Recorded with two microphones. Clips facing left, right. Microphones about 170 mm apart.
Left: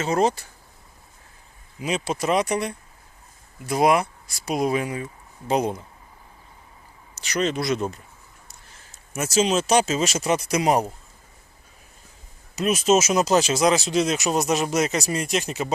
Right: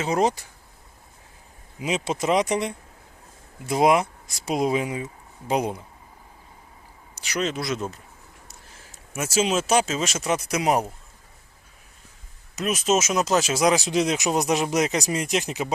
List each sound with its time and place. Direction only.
0.0 s speech: 15° right (ahead or behind)
1.8 s speech: 20° right (ahead or behind)
7.2 s speech: 10° right (ahead or behind)
12.5 s speech: centre (ahead or behind)
13.4 s speech: 10° right (ahead or behind)